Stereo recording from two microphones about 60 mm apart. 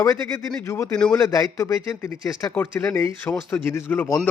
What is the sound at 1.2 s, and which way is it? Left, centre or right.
Speech, left.